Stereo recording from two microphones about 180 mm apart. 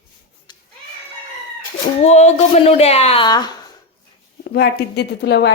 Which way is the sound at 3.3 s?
20° left (ahead or behind).